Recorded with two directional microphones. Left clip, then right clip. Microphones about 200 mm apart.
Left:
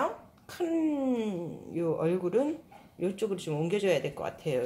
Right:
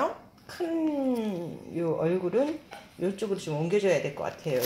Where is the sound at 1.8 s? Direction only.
15° left (ahead or behind).